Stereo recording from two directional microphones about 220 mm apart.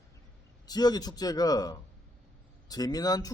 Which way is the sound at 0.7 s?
20° left (ahead or behind).